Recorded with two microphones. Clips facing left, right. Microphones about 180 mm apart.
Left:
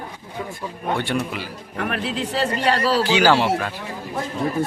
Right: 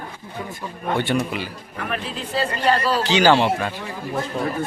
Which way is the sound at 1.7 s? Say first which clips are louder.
Left 4 dB; 75° left (ahead or behind).